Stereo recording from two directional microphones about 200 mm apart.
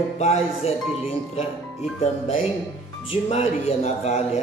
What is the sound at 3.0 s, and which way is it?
Speech, 30° left (ahead or behind).